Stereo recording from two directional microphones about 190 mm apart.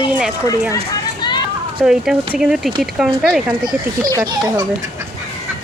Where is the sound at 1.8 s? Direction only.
5° right (ahead or behind).